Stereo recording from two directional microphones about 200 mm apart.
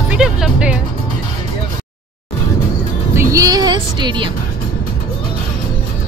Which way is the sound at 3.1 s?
15° right (ahead or behind).